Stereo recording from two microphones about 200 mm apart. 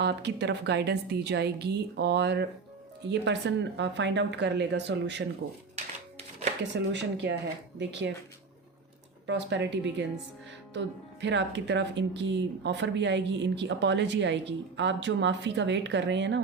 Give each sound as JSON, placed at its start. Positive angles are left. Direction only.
{"t": 0.0, "sound": "speech", "side_deg": -60}
{"t": 5.7, "sound": "music", "side_deg": -35}
{"t": 6.6, "sound": "speech", "side_deg": -60}
{"t": 9.2, "sound": "speech", "side_deg": -65}